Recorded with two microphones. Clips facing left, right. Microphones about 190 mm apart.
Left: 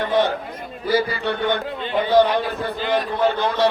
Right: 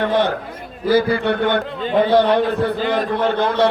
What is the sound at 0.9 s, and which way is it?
Speech, 60° right (ahead or behind).